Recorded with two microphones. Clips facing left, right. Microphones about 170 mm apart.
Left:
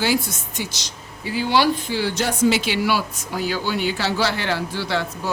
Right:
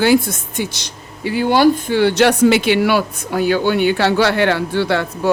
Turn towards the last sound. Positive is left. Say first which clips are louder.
# right 7 dB
turn(degrees=-60)  # may be behind; listen again after turning